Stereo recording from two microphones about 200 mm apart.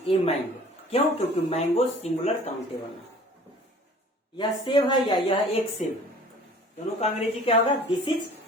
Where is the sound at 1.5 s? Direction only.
30° left (ahead or behind).